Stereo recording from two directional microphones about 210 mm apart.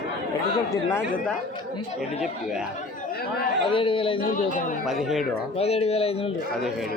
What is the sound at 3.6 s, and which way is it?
Speech, 25° left (ahead or behind).